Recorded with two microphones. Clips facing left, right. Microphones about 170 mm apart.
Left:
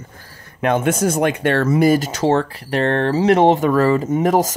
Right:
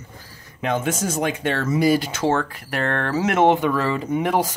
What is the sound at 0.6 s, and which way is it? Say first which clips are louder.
Speech: left 6 dB; 60° left (ahead or behind).